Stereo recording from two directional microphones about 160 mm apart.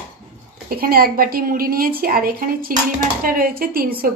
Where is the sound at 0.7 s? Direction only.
70° right (ahead or behind).